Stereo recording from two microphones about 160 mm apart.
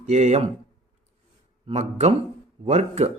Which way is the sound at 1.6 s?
45° right (ahead or behind).